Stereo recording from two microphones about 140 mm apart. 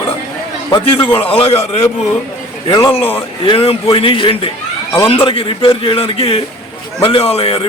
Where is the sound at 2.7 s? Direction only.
25° left (ahead or behind).